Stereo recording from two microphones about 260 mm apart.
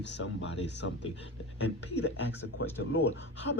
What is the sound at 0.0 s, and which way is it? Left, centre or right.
Speech, left.